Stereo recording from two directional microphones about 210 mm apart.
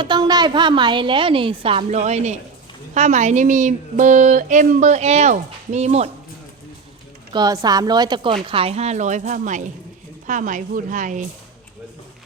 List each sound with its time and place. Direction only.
0.0 s a woman's voice: 20° right (ahead or behind)
7.3 s a woman's voice: 20° right (ahead or behind); by 11.3 s 35° right (ahead or behind)